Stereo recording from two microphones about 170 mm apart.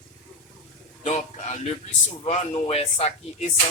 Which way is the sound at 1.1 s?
40° left (ahead or behind).